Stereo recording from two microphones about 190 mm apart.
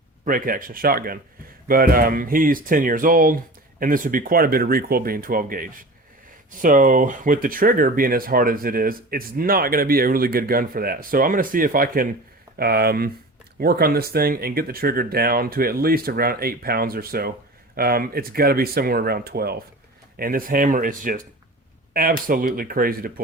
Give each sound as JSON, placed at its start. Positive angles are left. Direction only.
{"t": 0.3, "sound": "speech", "side_deg": -45}